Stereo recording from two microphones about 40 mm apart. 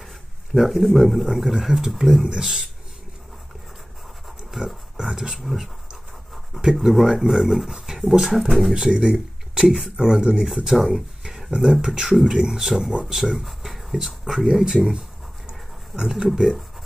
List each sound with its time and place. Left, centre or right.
0.6 s speech: centre
4.5 s dog: centre
4.9 s a sound: centre
5.4 s speech: centre
6.8 s speech: centre
8.7 s speech: centre
10.4 s speech: centre